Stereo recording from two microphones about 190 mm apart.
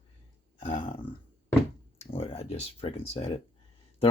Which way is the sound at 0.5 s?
25° left (ahead or behind).